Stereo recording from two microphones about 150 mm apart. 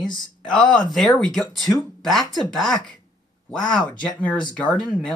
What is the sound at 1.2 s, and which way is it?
Speech, 5° left (ahead or behind).